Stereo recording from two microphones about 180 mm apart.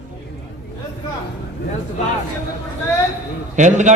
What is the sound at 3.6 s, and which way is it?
Speech, 40° right (ahead or behind).